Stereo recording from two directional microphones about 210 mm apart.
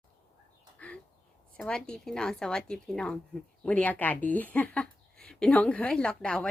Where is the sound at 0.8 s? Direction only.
5° left (ahead or behind).